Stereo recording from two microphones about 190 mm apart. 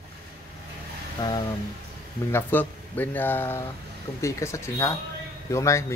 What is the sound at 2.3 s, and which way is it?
Speech, 10° left (ahead or behind).